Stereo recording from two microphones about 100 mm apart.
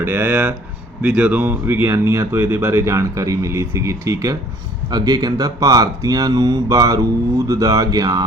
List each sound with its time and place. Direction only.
0.0 s speech: 20° right (ahead or behind); by 8.2 s 40° right (ahead or behind)